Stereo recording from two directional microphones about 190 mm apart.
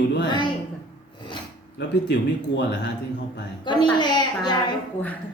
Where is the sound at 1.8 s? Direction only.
65° left (ahead or behind).